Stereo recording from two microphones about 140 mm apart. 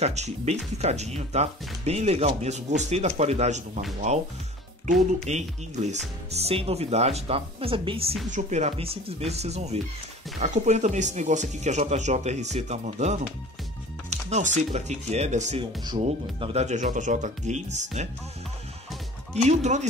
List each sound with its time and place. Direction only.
0.0 s speech: 50° right (ahead or behind)
8.3 s speech: 55° right (ahead or behind)
14.3 s speech: 55° right (ahead or behind)
15.8 s speech: 30° right (ahead or behind)
16.5 s speech: 55° right (ahead or behind)
19.3 s speech: 55° right (ahead or behind)